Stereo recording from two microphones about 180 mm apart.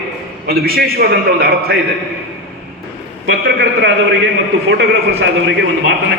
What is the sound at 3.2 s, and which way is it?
A man's voice, 85° right.